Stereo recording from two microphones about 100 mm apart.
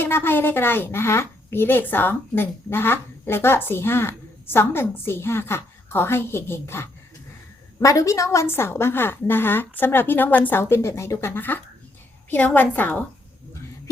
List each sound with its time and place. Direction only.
0.0 s a woman's voice: 20° left (ahead or behind)